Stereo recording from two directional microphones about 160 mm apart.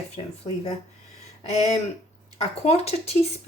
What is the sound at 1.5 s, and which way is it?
Speech, 45° left (ahead or behind).